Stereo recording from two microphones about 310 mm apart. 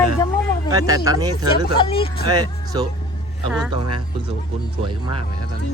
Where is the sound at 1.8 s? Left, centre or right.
Centre.